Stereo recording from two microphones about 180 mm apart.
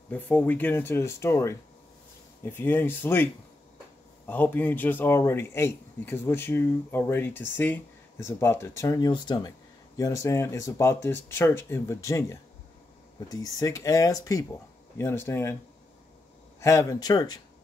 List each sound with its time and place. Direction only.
0.1 s a man's voice: 10° left (ahead or behind)
4.3 s a man's voice: 10° left (ahead or behind)
16.5 s speech: 15° left (ahead or behind)